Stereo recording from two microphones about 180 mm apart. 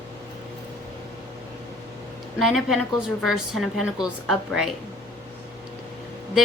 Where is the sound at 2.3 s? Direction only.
Centre (ahead or behind).